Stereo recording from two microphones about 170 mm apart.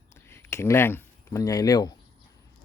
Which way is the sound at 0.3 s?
15° left (ahead or behind).